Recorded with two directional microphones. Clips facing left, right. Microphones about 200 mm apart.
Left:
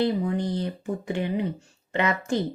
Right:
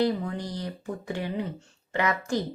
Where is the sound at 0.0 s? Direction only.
25° left (ahead or behind).